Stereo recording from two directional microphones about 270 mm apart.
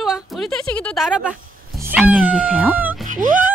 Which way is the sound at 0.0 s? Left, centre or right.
Centre.